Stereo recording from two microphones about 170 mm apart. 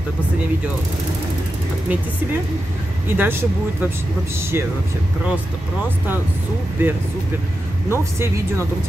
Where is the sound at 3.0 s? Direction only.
15° right (ahead or behind).